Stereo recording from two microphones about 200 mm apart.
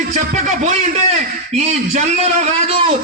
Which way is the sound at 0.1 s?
35° right (ahead or behind).